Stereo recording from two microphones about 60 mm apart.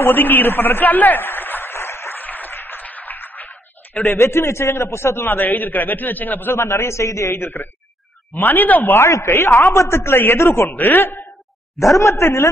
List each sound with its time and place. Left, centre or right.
0.0 s a man's voice: left
2.1 s music: left
4.0 s a man's voice: left
6.6 s speech: left
8.4 s a man's voice: left
8.9 s speech: left
10.7 s a man's voice: left
11.9 s speech: left